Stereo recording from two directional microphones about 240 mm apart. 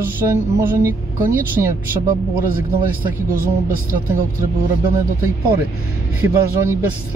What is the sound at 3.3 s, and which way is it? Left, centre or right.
Speech, right.